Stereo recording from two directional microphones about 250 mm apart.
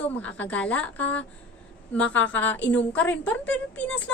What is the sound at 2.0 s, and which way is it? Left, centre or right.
Speech, left.